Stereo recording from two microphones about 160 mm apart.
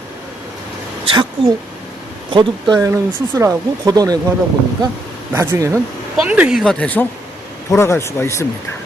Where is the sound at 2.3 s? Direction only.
30° right (ahead or behind).